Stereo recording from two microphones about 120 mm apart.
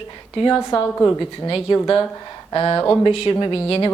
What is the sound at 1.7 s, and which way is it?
Speech, 40° left (ahead or behind).